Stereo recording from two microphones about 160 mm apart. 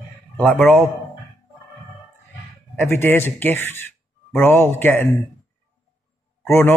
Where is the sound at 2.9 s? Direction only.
15° left (ahead or behind).